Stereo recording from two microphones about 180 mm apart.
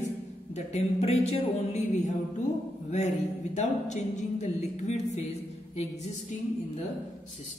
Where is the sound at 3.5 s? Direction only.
40° left (ahead or behind).